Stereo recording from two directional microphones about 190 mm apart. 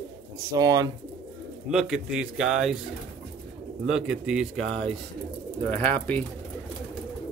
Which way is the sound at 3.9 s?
5° right (ahead or behind).